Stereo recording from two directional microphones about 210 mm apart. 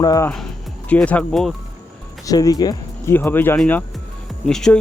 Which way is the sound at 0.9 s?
5° left (ahead or behind).